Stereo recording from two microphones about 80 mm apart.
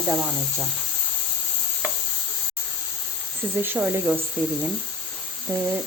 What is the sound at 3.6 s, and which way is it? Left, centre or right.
Speech, right.